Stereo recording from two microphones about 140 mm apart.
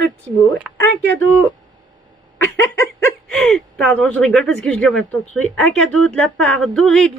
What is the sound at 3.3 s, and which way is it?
Speech, 5° left (ahead or behind).